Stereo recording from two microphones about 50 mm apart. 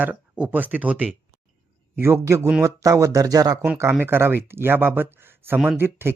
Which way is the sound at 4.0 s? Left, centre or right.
Right.